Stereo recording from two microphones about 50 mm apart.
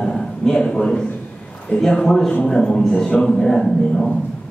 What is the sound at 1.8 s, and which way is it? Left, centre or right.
A man's voice, centre.